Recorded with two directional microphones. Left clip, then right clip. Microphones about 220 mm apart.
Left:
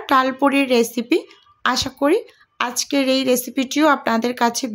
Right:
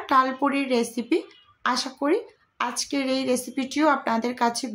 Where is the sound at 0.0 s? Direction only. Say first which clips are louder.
Left 4 dB; 35° left (ahead or behind).